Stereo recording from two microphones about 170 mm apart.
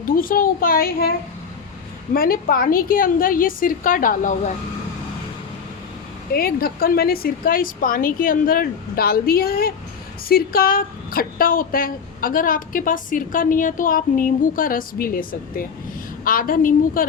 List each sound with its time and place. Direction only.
0.2 s speech: 55° left (ahead or behind)
2.1 s speech: 60° left (ahead or behind)
6.3 s speech: 60° left (ahead or behind)
16.2 s speech: 55° left (ahead or behind)